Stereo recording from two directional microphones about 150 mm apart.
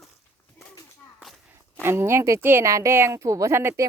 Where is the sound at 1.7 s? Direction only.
15° right (ahead or behind).